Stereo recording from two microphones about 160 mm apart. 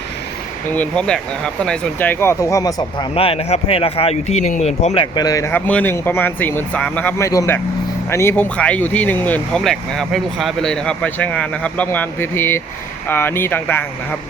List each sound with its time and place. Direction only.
0.7 s speech: 10° left (ahead or behind)
3.2 s speech: 35° left (ahead or behind)
5.1 s speech: 25° left (ahead or behind)